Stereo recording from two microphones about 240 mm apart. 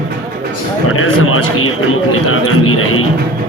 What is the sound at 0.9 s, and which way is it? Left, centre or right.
A man's voice, left.